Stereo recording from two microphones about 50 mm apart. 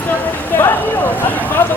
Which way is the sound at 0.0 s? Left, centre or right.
Left.